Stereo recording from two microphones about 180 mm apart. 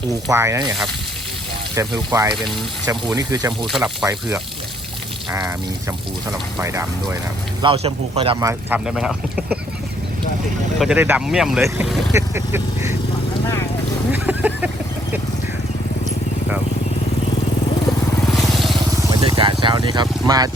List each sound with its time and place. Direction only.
0.1 s speech: 15° right (ahead or behind)
1.7 s speech: 20° right (ahead or behind)
3.7 s speech: centre (ahead or behind)
7.6 s a man's voice: 30° right (ahead or behind)
8.4 s speech: 15° right (ahead or behind)
8.9 s speech: 5° right (ahead or behind)
10.8 s speech: 5° right (ahead or behind)
12.1 s speech: 15° right (ahead or behind)
14.1 s a sound: 10° right (ahead or behind)
18.3 s vehicle: centre (ahead or behind)
19.2 s vehicle: 30° right (ahead or behind)